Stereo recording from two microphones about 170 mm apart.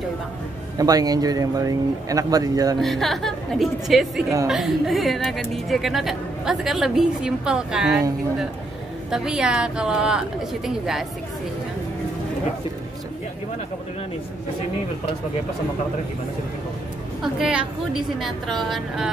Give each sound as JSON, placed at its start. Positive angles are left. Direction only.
{"t": 0.7, "sound": "speech", "side_deg": -20}
{"t": 2.8, "sound": "a woman's voice", "side_deg": 0}
{"t": 9.1, "sound": "a woman's voice", "side_deg": -5}
{"t": 17.2, "sound": "a woman's voice", "side_deg": -5}